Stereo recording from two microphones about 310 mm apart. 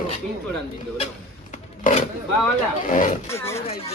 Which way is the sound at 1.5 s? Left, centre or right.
Left.